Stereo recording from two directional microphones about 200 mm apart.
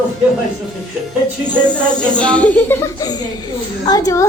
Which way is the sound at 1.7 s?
5° left (ahead or behind).